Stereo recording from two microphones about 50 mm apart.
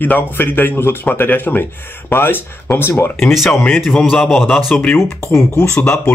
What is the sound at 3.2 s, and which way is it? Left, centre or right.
Speech, centre.